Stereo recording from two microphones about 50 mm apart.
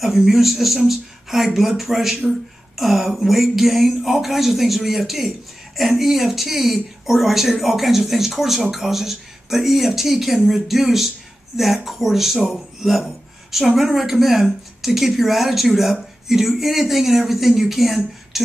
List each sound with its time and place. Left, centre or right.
0.0 s speech: centre